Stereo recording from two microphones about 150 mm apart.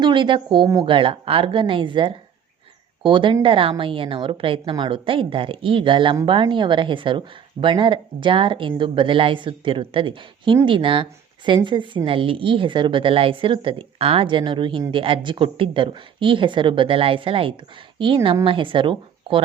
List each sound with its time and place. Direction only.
0.0 s a woman's voice: 30° right (ahead or behind)